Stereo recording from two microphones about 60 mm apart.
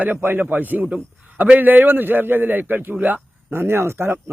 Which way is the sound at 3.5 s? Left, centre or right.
Right.